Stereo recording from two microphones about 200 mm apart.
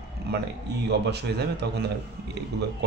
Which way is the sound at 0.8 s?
55° right (ahead or behind).